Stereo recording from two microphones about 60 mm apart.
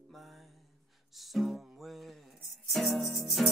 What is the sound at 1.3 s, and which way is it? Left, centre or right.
Music, centre.